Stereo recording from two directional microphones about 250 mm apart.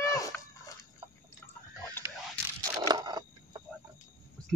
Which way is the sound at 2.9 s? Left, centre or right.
Centre.